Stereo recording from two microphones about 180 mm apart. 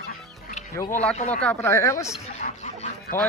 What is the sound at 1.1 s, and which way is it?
Speech, 40° left (ahead or behind).